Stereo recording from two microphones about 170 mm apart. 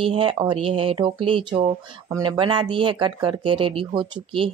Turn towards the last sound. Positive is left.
turn(degrees=-30)  # may be behind; listen again after turning